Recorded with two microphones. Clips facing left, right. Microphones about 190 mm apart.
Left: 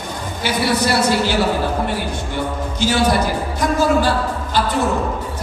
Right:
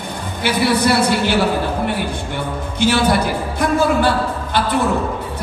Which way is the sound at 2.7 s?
60° right (ahead or behind).